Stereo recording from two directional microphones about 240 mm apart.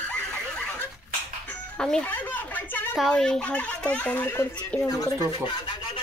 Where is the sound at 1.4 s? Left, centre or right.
Centre.